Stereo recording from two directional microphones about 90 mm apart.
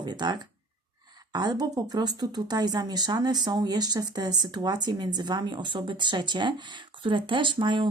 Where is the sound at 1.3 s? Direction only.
50° right (ahead or behind).